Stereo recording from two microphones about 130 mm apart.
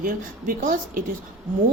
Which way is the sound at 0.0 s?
90° right.